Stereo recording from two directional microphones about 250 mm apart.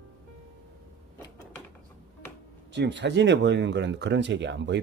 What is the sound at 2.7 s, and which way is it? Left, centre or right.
Speech, right.